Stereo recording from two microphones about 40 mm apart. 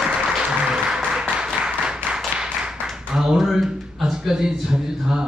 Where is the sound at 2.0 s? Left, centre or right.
Centre.